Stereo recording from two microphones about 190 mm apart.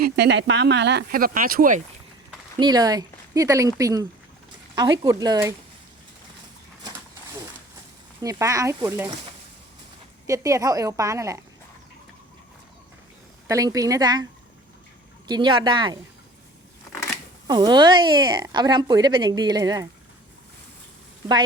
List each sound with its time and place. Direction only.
0.0 s speech: 65° right (ahead or behind); by 1.8 s 45° right (ahead or behind)
2.6 s a woman's voice: 20° right (ahead or behind)
5.0 s a woman's voice: 20° right (ahead or behind)
8.2 s a woman's voice: 15° right (ahead or behind)
10.2 s a woman's voice: 15° right (ahead or behind)
13.5 s a woman's voice: 20° right (ahead or behind)
15.3 s speech: 25° right (ahead or behind)
17.5 s speech: 25° right (ahead or behind)